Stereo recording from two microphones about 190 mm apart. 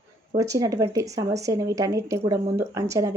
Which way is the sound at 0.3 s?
15° right (ahead or behind).